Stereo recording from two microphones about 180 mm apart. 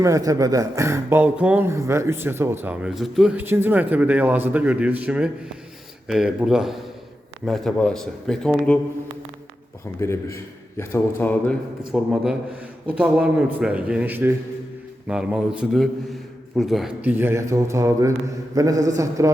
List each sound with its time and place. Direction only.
0.0 s speech: 20° right (ahead or behind); by 8.8 s 5° left (ahead or behind)
10.0 s a man's voice: 15° left (ahead or behind)
11.9 s speech: 5° right (ahead or behind)